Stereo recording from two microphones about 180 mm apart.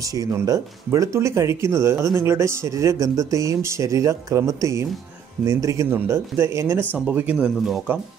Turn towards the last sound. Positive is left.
turn(degrees=-5)  # may be behind; listen again after turning